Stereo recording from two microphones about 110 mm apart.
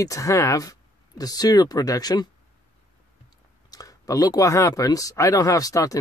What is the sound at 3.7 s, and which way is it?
Speech, 35° left (ahead or behind).